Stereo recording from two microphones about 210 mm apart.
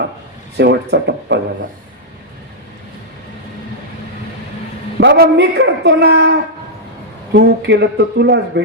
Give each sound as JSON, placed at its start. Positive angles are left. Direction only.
{"t": 0.5, "sound": "a man's voice", "side_deg": -50}
{"t": 4.9, "sound": "a man's voice", "side_deg": -50}
{"t": 7.3, "sound": "speech", "side_deg": -55}